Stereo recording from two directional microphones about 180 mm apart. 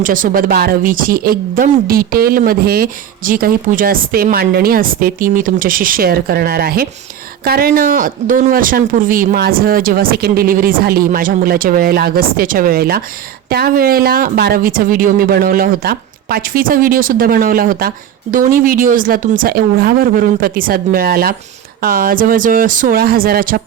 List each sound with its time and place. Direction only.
0.0 s speech: 50° right (ahead or behind)